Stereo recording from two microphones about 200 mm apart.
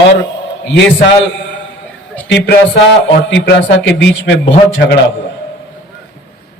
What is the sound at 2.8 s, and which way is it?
A man's voice, 65° left (ahead or behind).